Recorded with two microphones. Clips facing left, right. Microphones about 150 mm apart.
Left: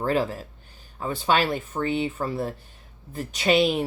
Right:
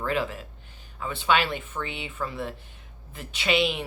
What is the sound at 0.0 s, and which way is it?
Speech, 40° left (ahead or behind).